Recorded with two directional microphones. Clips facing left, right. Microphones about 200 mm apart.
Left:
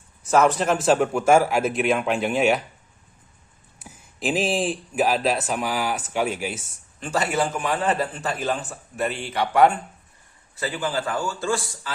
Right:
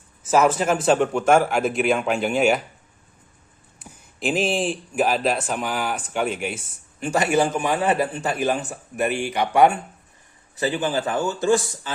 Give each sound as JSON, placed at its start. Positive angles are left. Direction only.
{"t": 0.2, "sound": "speech", "side_deg": -5}
{"t": 3.8, "sound": "speech", "side_deg": 0}
{"t": 7.0, "sound": "a man's voice", "side_deg": -15}